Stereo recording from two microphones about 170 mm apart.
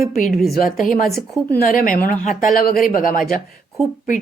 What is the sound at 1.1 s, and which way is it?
Speech, 5° left (ahead or behind).